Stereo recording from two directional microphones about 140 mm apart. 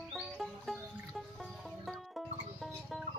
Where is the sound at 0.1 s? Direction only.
Centre (ahead or behind).